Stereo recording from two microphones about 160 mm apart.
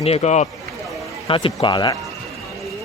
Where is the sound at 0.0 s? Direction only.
40° left (ahead or behind).